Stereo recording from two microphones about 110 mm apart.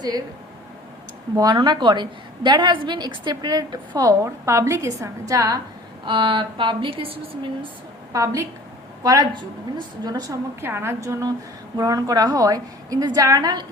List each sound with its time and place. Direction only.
1.4 s a woman's voice: 40° right (ahead or behind)
6.1 s a woman's voice: 50° right (ahead or behind)
8.1 s a woman's voice: 30° right (ahead or behind)
9.0 s a woman's voice: 40° right (ahead or behind)
10.6 s a woman's voice: 20° right (ahead or behind); by 13.7 s 40° right (ahead or behind)